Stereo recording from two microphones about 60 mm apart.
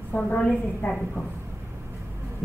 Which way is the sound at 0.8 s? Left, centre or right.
Left.